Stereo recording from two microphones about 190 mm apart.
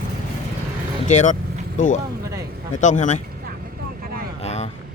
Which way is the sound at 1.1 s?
40° left (ahead or behind).